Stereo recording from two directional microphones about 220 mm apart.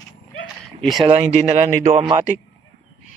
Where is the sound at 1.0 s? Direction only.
30° right (ahead or behind).